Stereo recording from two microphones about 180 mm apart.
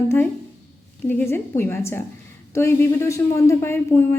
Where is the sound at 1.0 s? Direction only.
15° left (ahead or behind).